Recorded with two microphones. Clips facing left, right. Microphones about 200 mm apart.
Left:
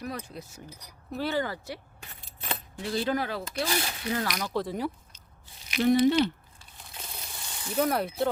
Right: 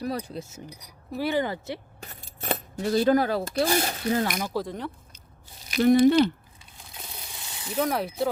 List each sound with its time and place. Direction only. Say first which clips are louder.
0.0 s a sound: right 6 dB; 35° right (ahead or behind)
1.2 s speech: right 4 dB; 15° right (ahead or behind)
2.0 s speech: right 6 dB; 45° right (ahead or behind)
4.4 s speech: even; 5° right (ahead or behind)
5.6 s speech: right 4 dB; 45° right (ahead or behind)
6.9 s pulleys: even; centre (ahead or behind)